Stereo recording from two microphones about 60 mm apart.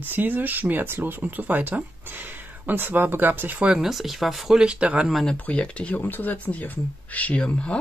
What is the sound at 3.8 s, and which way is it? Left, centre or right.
Speech, centre.